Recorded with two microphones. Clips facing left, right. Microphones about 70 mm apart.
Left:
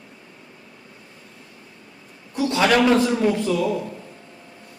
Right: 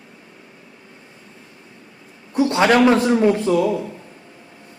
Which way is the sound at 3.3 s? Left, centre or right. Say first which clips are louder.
Right 4 dB; right.